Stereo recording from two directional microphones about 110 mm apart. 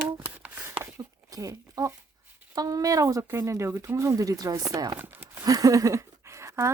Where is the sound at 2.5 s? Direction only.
35° right (ahead or behind).